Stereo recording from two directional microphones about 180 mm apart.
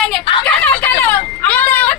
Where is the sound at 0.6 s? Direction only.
10° left (ahead or behind).